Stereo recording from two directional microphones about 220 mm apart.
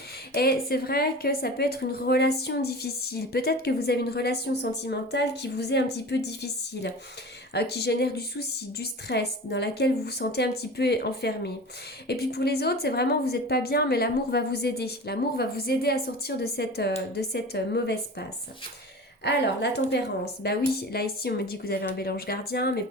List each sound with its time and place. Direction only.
0.3 s a woman's voice: 45° left (ahead or behind)